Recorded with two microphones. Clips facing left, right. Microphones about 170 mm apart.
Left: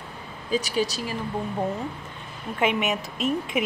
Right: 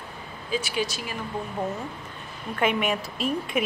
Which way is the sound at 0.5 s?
40° left (ahead or behind).